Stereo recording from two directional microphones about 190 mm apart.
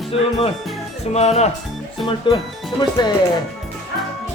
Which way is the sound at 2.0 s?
25° left (ahead or behind).